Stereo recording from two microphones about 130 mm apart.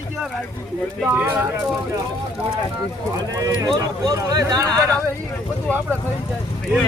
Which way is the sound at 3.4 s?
30° right (ahead or behind).